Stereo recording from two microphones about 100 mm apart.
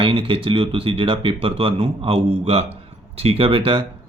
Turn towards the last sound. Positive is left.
turn(degrees=-60)  # may be behind; listen again after turning